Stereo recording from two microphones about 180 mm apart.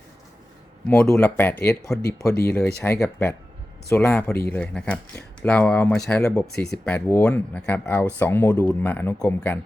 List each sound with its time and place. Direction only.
0.9 s speech: 10° left (ahead or behind)